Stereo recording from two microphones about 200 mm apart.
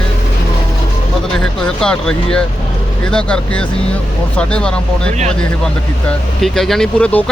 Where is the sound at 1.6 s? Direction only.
5° left (ahead or behind).